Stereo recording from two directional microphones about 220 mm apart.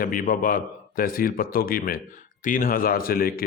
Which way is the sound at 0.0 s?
40° left (ahead or behind).